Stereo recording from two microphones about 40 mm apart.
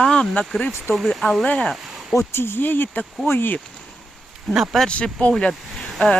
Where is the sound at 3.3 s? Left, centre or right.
Left.